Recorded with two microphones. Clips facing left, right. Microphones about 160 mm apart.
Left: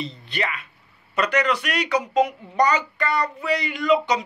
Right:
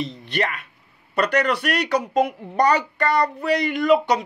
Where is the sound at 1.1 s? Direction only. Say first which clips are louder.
Right 1 dB; 55° right (ahead or behind).